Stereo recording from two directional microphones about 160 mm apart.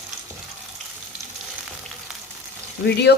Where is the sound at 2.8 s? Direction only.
90° left.